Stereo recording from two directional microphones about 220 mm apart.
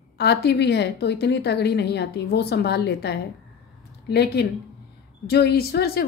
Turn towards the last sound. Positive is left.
turn(degrees=45)  # may be behind; listen again after turning